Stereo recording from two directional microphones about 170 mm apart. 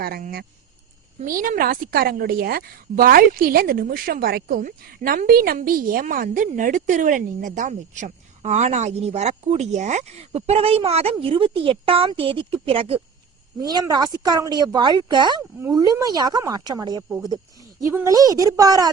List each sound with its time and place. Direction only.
0.0 s a woman's voice: 60° right (ahead or behind); by 13.0 s 35° right (ahead or behind)
13.6 s a woman's voice: 20° right (ahead or behind)